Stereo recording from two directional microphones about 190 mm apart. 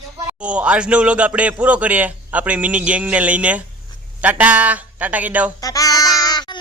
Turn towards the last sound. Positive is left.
turn(degrees=20)  # may be behind; listen again after turning